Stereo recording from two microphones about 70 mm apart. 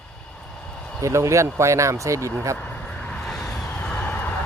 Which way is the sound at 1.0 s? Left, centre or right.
Right.